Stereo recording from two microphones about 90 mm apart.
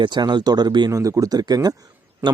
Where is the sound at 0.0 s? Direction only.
60° right (ahead or behind).